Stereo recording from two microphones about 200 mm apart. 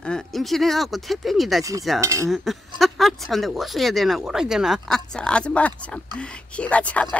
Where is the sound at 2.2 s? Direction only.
Centre (ahead or behind).